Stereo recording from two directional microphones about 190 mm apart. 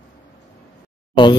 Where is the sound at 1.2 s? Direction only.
25° left (ahead or behind).